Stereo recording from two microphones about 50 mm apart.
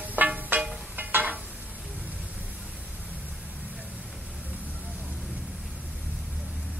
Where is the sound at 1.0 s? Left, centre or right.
Right.